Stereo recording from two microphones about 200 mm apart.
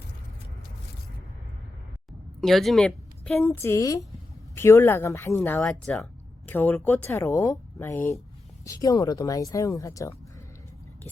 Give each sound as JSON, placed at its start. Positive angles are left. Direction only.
{"t": 2.4, "sound": "a woman's voice", "side_deg": 0}